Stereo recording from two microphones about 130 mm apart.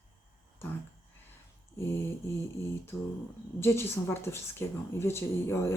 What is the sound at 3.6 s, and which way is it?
Speech, 20° left (ahead or behind).